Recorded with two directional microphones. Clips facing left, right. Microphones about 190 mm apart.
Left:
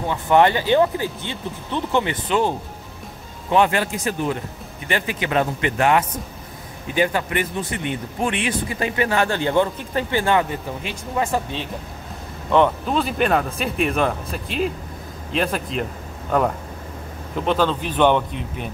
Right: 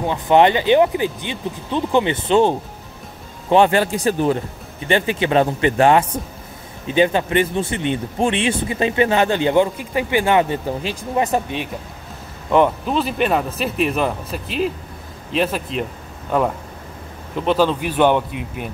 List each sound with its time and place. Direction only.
0.0 s speech: 20° right (ahead or behind)
10.5 s speech: 30° right (ahead or behind)
11.2 s speech: 15° right (ahead or behind)